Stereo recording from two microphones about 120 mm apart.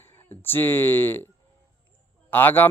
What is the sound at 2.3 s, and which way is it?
Speech, 15° left (ahead or behind).